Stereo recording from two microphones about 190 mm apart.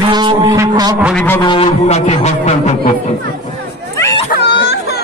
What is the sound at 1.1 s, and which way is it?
Speech, 10° left (ahead or behind).